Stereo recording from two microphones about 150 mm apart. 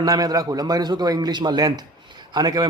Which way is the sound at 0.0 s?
25° right (ahead or behind).